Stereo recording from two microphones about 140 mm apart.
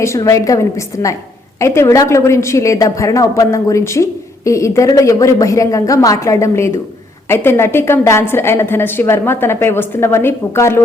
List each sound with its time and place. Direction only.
0.0 s a woman's voice: 20° left (ahead or behind)